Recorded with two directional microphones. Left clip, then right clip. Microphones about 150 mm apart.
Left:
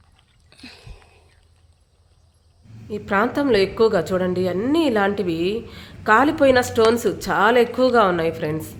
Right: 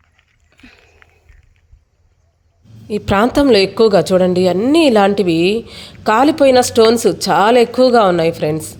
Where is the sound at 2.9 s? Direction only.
45° right (ahead or behind).